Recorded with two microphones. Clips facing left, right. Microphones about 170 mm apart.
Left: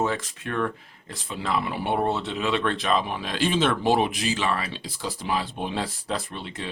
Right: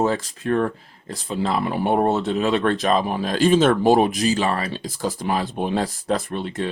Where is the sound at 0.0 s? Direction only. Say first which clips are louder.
Right 5 dB; 35° right (ahead or behind).